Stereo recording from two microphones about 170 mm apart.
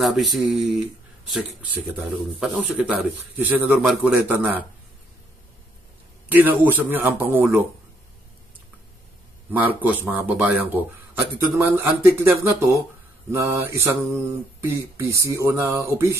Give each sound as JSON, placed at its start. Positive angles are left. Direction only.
{"t": 0.0, "sound": "speech", "side_deg": 0}
{"t": 2.4, "sound": "a man's voice", "side_deg": -5}
{"t": 6.2, "sound": "a man's voice", "side_deg": -10}
{"t": 9.5, "sound": "a man's voice", "side_deg": -10}